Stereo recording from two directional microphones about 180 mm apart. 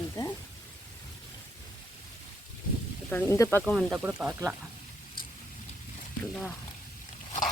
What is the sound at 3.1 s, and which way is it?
Speech, 10° left (ahead or behind).